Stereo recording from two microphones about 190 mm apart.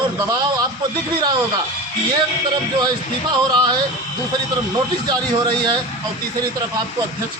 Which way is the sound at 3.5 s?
20° right (ahead or behind).